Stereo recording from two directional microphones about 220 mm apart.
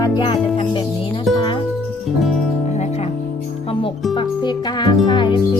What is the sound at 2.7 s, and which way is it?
Music, 30° left (ahead or behind).